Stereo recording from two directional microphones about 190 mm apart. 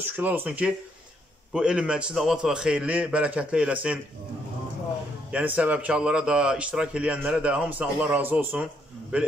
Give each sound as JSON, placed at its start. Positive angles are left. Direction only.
{"t": 0.0, "sound": "a man's voice", "side_deg": -10}
{"t": 5.3, "sound": "speech", "side_deg": -5}